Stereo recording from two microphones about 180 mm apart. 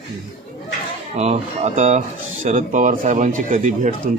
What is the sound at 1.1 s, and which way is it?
Speech, 40° right (ahead or behind).